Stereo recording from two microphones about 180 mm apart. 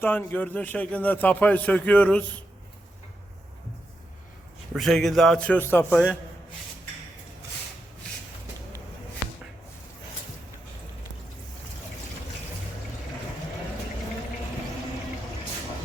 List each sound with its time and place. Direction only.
0.0 s a man's voice: 10° left (ahead or behind)
4.7 s a man's voice: centre (ahead or behind)